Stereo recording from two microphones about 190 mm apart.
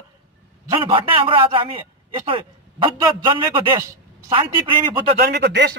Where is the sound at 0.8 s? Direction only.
25° right (ahead or behind).